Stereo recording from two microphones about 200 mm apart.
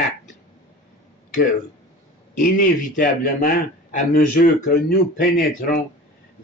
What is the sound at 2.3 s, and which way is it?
A man's voice, 40° left (ahead or behind).